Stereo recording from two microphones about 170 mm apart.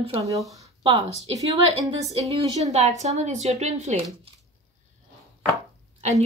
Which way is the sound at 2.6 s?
40° right (ahead or behind).